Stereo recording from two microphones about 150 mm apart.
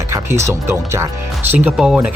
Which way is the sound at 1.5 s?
5° right (ahead or behind).